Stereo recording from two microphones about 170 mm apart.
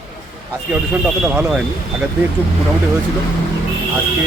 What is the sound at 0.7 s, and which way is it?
Speech, 5° right (ahead or behind).